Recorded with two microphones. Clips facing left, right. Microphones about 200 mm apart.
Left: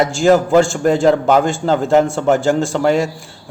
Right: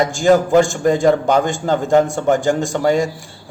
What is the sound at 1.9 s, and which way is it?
A man's voice, 15° right (ahead or behind).